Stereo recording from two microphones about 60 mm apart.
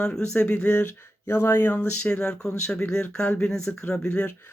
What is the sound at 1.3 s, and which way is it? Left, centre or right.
Speech, left.